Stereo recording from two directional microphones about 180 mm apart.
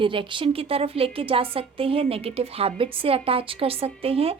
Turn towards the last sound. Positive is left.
turn(degrees=-35)  # may be behind; listen again after turning